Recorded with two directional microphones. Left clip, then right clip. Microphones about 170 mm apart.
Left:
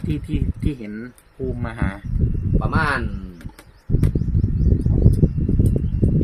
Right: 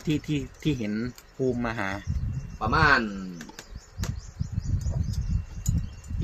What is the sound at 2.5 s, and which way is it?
Speech, centre (ahead or behind).